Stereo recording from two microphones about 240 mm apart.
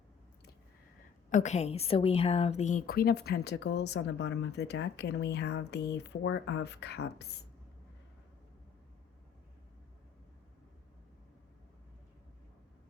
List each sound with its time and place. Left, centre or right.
1.3 s a woman's voice: left